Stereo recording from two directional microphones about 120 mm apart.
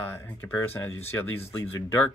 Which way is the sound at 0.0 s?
20° left (ahead or behind).